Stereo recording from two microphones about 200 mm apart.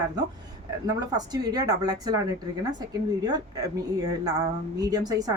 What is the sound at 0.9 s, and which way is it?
A woman's voice, 20° right (ahead or behind).